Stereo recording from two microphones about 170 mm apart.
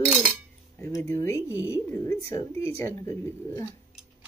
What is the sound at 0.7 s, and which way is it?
Speech, 15° left (ahead or behind).